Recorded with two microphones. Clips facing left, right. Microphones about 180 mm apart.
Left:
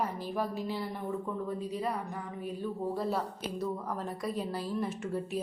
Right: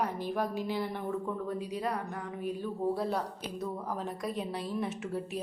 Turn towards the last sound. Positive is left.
turn(degrees=0)  # may be behind; listen again after turning